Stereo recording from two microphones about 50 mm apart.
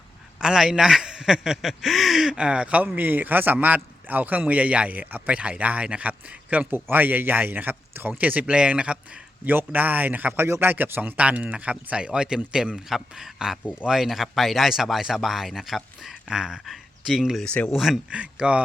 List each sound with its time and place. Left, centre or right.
0.3 s a man's voice: centre
2.4 s speech: right
2.8 s speech: right
6.7 s speech: right
8.2 s speech: right
8.4 s speech: right
9.4 s speech: right
10.3 s a man's voice: right
11.2 s a man's voice: right
12.7 s a man's voice: centre
16.6 s speech: centre
17.4 s speech: left
17.7 s speech: centre
18.1 s speech: right